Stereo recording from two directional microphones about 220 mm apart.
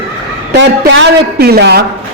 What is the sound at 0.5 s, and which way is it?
A man's voice, 55° right (ahead or behind).